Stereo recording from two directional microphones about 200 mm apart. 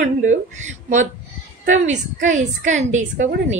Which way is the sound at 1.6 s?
40° right (ahead or behind).